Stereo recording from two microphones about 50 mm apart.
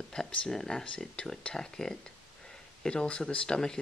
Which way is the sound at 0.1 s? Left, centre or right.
Centre.